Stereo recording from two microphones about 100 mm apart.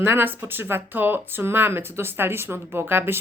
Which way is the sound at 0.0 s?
20° right (ahead or behind).